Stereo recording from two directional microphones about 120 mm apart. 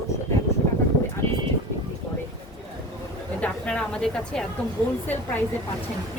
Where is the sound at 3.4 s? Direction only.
10° left (ahead or behind).